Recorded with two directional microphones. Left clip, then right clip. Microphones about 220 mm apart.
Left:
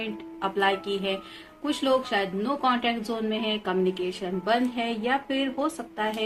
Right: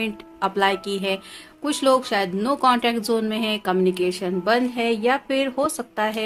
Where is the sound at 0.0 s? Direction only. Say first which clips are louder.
Right 6 dB; 55° right (ahead or behind).